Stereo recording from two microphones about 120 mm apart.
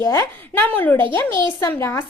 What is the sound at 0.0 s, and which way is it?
A woman's voice, 25° left (ahead or behind).